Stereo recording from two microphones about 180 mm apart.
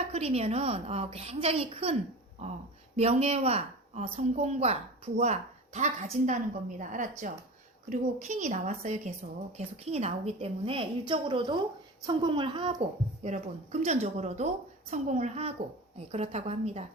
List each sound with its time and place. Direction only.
0.1 s a woman's voice: 35° right (ahead or behind)
13.2 s a woman's voice: 40° right (ahead or behind)